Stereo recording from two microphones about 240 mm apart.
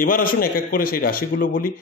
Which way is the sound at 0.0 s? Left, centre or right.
Left.